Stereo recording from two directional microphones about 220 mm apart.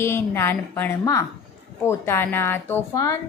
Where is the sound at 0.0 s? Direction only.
10° left (ahead or behind).